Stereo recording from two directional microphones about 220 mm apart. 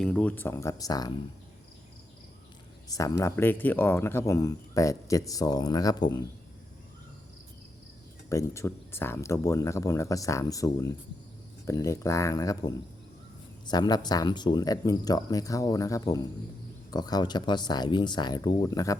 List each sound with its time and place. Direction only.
0.0 s speech: 5° left (ahead or behind)
2.9 s speech: 15° left (ahead or behind)
8.3 s speech: 15° left (ahead or behind)